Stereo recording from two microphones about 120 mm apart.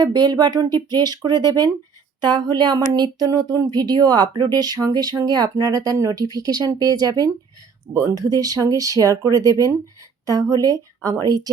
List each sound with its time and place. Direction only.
0.0 s speech: 35° right (ahead or behind)